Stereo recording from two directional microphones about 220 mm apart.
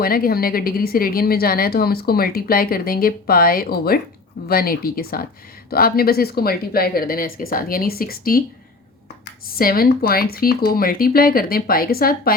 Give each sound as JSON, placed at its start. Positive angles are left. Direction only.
{"t": 0.0, "sound": "speech", "side_deg": 40}
{"t": 9.6, "sound": "speech", "side_deg": 40}